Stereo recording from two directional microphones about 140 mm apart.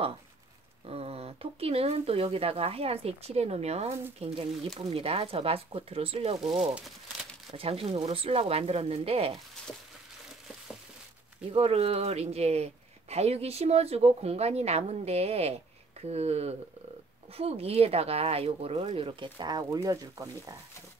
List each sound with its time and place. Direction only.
0.8 s speech: 45° right (ahead or behind)
7.5 s speech: 45° right (ahead or behind)
11.5 s speech: 45° right (ahead or behind); by 20.5 s 25° right (ahead or behind)